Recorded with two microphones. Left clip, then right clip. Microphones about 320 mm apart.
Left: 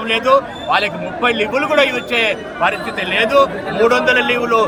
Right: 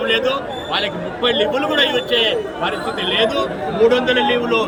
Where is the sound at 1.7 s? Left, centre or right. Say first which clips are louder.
Left 2 dB; centre.